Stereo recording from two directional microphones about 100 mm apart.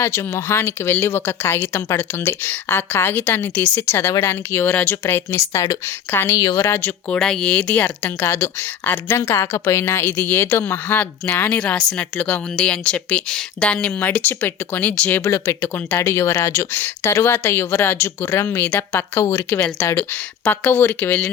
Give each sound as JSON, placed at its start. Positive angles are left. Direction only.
{"t": 0.0, "sound": "speech", "side_deg": 30}
{"t": 6.3, "sound": "a woman's voice", "side_deg": 35}
{"t": 6.7, "sound": "speech", "side_deg": 20}
{"t": 7.2, "sound": "speech", "side_deg": 5}
{"t": 16.0, "sound": "speech", "side_deg": 30}